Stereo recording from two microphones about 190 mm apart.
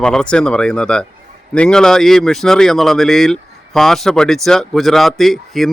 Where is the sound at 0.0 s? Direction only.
5° left (ahead or behind).